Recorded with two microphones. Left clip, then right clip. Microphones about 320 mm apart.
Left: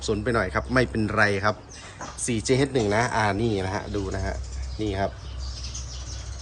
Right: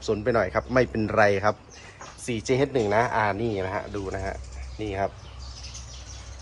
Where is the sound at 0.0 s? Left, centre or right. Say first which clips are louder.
Right 1 dB; centre.